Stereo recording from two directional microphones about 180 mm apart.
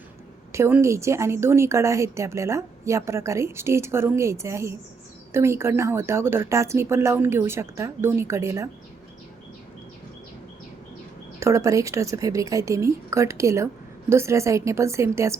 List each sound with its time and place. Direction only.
0.5 s a woman's voice: 15° right (ahead or behind)
11.3 s a woman's voice: 15° right (ahead or behind)